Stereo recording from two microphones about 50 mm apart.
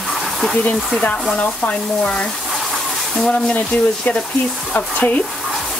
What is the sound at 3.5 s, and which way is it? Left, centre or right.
Speech, left.